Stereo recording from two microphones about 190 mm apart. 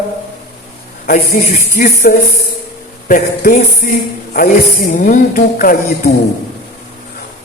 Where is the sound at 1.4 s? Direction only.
50° left (ahead or behind).